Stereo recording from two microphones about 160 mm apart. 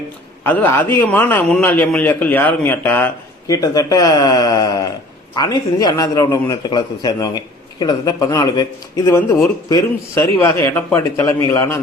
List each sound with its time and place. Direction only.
0.4 s a man's voice: 10° left (ahead or behind)
3.4 s a man's voice: 20° left (ahead or behind)